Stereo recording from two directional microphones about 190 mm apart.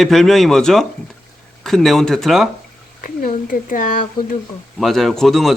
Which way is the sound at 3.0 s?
45° left (ahead or behind).